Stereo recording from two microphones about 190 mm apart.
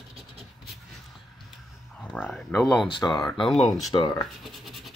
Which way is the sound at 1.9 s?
5° left (ahead or behind).